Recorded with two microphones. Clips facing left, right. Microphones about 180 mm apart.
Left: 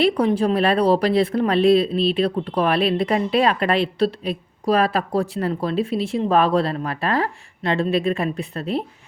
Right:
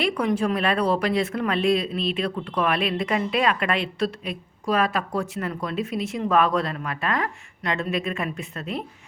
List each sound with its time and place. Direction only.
0.0 s speech: 30° left (ahead or behind)